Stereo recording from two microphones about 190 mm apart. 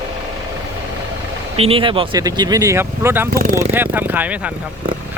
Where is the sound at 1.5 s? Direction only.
30° right (ahead or behind).